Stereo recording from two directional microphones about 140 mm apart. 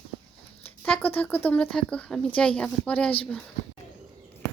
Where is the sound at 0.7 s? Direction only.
10° left (ahead or behind).